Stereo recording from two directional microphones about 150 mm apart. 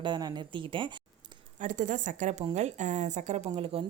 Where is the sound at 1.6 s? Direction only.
60° right (ahead or behind); by 3.8 s 40° right (ahead or behind).